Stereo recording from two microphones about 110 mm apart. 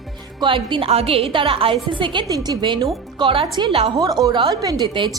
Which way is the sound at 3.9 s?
35° right (ahead or behind).